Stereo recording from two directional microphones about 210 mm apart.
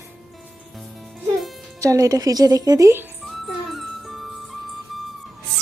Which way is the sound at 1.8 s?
15° right (ahead or behind).